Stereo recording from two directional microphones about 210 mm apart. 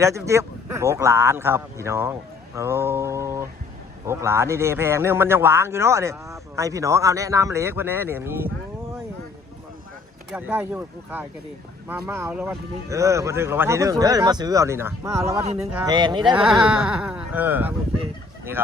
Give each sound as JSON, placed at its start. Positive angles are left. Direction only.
{"t": 0.0, "sound": "a man's voice", "side_deg": -15}
{"t": 10.3, "sound": "a man's voice", "side_deg": -10}
{"t": 12.9, "sound": "a man's voice", "side_deg": -15}
{"t": 15.4, "sound": "speech", "side_deg": -30}
{"t": 15.7, "sound": "speech", "side_deg": -20}
{"t": 16.3, "sound": "speech", "side_deg": -5}